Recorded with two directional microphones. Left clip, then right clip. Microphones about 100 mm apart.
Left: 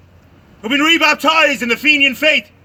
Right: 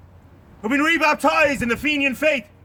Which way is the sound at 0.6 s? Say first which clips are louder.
Left 6 dB; 35° right (ahead or behind).